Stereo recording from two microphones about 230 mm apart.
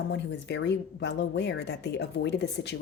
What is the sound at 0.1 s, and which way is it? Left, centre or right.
A woman's voice, left.